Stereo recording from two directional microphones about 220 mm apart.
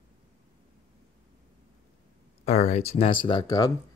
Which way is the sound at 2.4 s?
30° left (ahead or behind).